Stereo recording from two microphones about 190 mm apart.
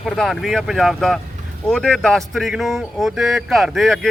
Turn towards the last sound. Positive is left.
turn(degrees=0)  # may be behind; listen again after turning